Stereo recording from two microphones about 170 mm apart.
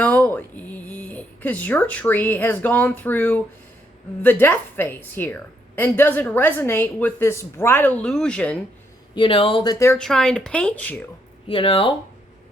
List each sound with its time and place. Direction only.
0.0 s a woman's voice: 10° left (ahead or behind)
9.1 s speech: 30° left (ahead or behind)
9.7 s a woman's voice: 15° left (ahead or behind)
10.0 s speech: 5° left (ahead or behind)
11.4 s speech: 30° left (ahead or behind)